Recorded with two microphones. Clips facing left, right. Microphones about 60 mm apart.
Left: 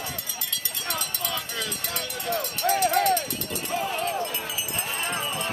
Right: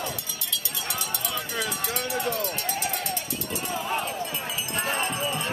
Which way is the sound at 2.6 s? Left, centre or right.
Left.